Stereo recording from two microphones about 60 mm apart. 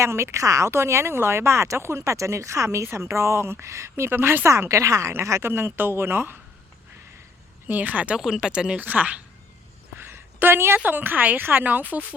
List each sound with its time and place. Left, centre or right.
0.0 s speech: right
0.7 s speech: right
5.4 s a woman's voice: right
7.7 s speech: right
8.2 s speech: centre
8.8 s speech: right
9.9 s a sound: right
10.8 s a woman's voice: right